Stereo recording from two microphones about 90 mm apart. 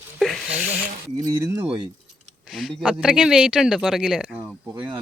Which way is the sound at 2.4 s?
Centre (ahead or behind).